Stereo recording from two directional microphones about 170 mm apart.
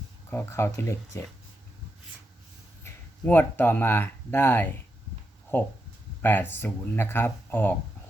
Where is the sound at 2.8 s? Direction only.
10° left (ahead or behind).